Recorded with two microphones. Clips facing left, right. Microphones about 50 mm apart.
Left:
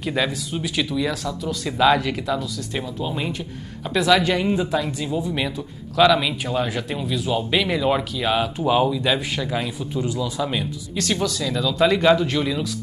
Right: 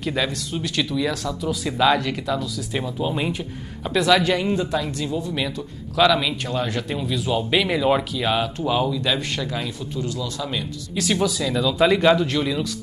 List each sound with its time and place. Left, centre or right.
0.0 s speech: centre
2.8 s speech: centre
8.5 s speech: centre
11.0 s speech: centre